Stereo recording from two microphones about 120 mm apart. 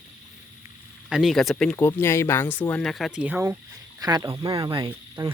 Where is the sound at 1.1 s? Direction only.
Centre (ahead or behind).